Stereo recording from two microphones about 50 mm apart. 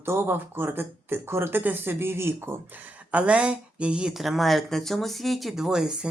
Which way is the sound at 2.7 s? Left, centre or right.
Right.